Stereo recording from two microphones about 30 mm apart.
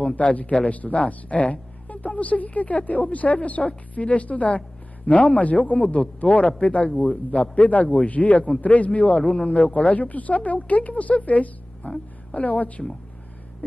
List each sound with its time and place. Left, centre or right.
0.1 s speech: left
0.9 s a woman's voice: left
7.0 s speech: left
9.4 s speech: left
9.7 s speech: left